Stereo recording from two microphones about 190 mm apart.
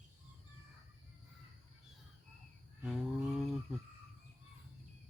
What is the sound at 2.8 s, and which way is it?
Speech, centre (ahead or behind).